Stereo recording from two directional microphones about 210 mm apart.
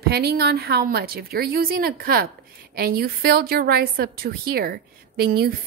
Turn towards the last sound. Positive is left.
turn(degrees=-45)  # may be behind; listen again after turning